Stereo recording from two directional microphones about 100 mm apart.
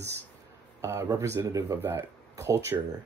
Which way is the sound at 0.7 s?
30° right (ahead or behind).